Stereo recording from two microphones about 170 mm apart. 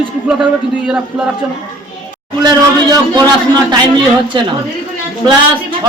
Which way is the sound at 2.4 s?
25° right (ahead or behind).